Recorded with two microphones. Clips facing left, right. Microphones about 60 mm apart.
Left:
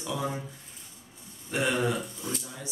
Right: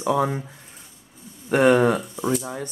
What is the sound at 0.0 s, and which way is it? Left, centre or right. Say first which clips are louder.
Speech: right 11 dB; right.